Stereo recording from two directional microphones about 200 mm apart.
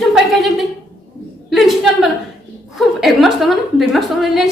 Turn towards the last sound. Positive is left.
turn(degrees=0)  # may be behind; listen again after turning